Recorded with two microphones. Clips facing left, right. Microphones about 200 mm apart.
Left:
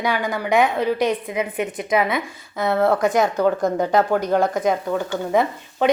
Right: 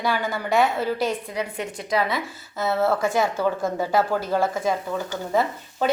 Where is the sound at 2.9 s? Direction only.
20° left (ahead or behind).